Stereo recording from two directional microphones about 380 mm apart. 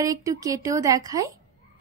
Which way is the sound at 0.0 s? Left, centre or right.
Centre.